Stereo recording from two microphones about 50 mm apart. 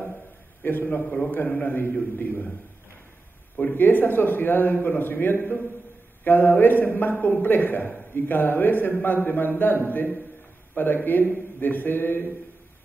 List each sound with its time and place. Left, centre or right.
0.7 s a man's voice: left
1.0 s a man's voice: left
1.6 s a man's voice: left
3.5 s a man's voice: left